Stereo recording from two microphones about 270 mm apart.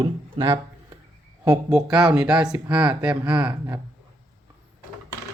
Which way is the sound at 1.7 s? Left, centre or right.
Centre.